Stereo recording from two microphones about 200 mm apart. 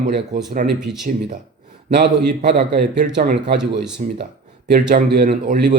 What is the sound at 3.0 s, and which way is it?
Speech, 40° right (ahead or behind).